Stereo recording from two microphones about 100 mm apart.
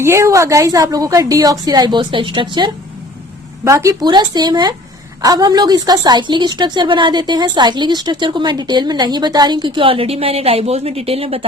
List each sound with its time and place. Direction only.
0.0 s a woman's voice: 30° right (ahead or behind); by 2.7 s 50° right (ahead or behind)
3.6 s a woman's voice: 30° right (ahead or behind)
4.0 s a woman's voice: 45° right (ahead or behind); by 11.4 s 75° right (ahead or behind)